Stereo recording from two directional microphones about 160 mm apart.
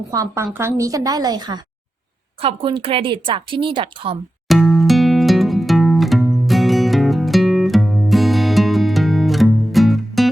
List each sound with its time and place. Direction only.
0.1 s a woman's voice: 20° right (ahead or behind)
4.4 s music: centre (ahead or behind)